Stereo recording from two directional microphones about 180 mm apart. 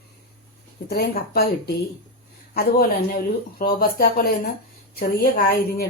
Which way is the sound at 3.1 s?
55° left (ahead or behind).